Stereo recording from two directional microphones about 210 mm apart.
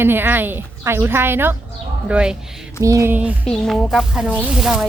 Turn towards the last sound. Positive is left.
turn(degrees=-5)  # may be behind; listen again after turning